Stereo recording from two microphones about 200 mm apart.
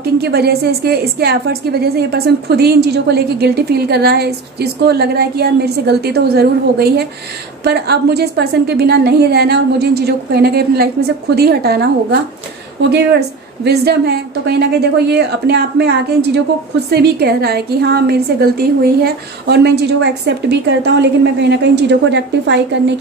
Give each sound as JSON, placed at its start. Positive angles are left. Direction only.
{"t": 0.0, "sound": "a woman's voice", "side_deg": -50}
{"t": 13.7, "sound": "a woman's voice", "side_deg": -55}